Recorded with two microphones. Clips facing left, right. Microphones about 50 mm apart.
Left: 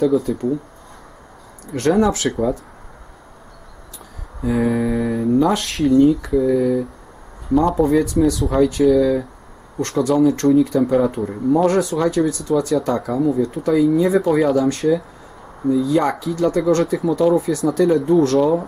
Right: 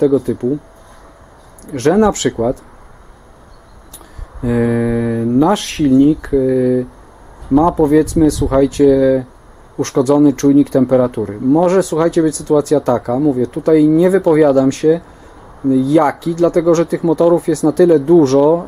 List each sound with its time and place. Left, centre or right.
0.0 s speech: centre
1.7 s speech: centre
4.4 s speech: centre